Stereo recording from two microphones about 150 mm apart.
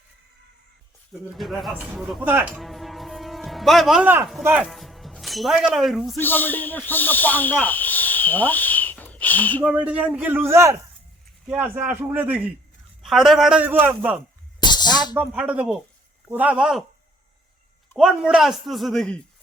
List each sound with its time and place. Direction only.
1.3 s a man's voice: centre (ahead or behind)
2.6 s music: centre (ahead or behind)
4.6 s speech: centre (ahead or behind)
6.1 s a man's voice: 15° left (ahead or behind)
9.6 s a man's voice: 10° right (ahead or behind)
14.6 s a sound: 30° left (ahead or behind)
15.1 s a man's voice: 10° right (ahead or behind)
17.9 s a man's voice: 5° right (ahead or behind)